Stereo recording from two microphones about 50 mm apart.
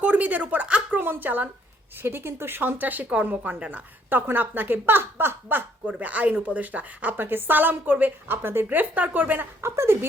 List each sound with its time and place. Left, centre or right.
0.0 s speech: right
2.0 s speech: right
5.9 s speech: right
7.2 s speech: right
9.6 s a woman's voice: right